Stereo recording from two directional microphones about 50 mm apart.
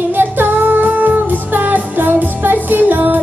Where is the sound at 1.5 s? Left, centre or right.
Right.